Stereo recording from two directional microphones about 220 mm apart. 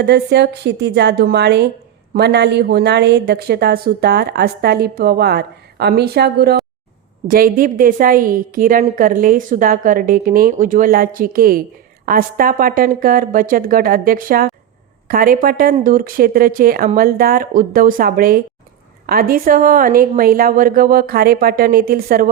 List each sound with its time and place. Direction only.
0.0 s a woman's voice: 50° right (ahead or behind)